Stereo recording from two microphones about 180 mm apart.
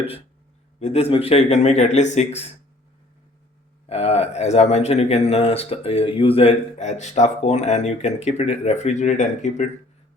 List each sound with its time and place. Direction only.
0.8 s speech: 35° left (ahead or behind)
3.8 s speech: 35° left (ahead or behind)